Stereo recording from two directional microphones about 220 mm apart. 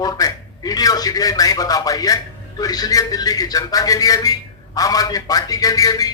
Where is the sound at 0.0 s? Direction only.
15° left (ahead or behind).